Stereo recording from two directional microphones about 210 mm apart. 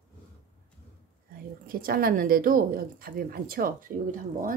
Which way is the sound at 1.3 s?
45° right (ahead or behind).